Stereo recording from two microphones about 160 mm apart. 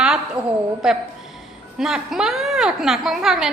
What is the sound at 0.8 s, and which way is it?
A woman's voice, 5° right (ahead or behind).